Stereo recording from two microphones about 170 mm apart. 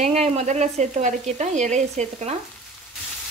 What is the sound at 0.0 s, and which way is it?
Speech, 40° right (ahead or behind).